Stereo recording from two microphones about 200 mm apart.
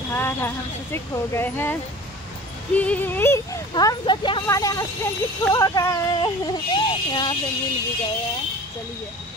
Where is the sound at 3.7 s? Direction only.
20° left (ahead or behind).